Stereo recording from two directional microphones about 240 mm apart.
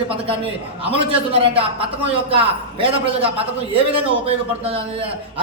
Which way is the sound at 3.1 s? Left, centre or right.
Right.